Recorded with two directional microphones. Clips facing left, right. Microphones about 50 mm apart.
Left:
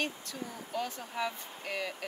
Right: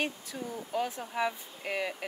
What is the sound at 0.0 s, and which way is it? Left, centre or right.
Speech, centre.